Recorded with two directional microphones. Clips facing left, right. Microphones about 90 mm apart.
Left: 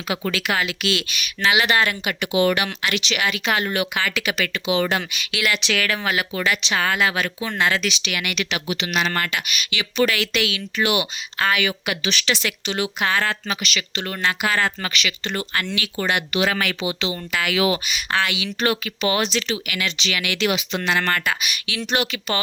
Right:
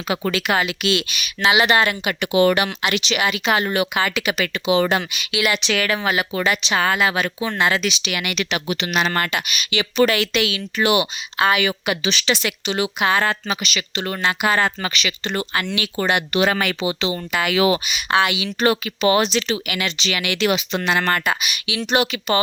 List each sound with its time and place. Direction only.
0.1 s speech: 35° right (ahead or behind)
2.2 s speech: 45° right (ahead or behind)
2.6 s speech: 20° right (ahead or behind)
5.1 s speech: 15° right (ahead or behind)
5.6 s speech: 25° right (ahead or behind)
7.6 s speech: 15° right (ahead or behind)
11.3 s speech: 15° right (ahead or behind)
11.6 s speech: 25° right (ahead or behind)
15.7 s speech: 30° right (ahead or behind)
17.8 s speech: 15° right (ahead or behind)
18.4 s speech: 30° right (ahead or behind)
20.8 s speech: 15° right (ahead or behind)